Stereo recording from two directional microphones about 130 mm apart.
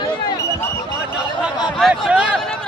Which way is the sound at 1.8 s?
5° right (ahead or behind).